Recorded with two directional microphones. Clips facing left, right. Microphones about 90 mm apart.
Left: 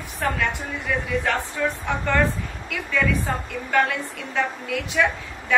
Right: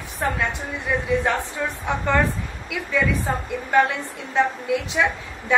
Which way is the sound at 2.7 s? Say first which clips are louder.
Right 2 dB; 15° right (ahead or behind).